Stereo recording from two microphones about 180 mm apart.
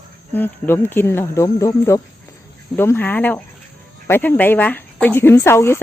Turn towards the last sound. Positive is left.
turn(degrees=15)  # may be behind; listen again after turning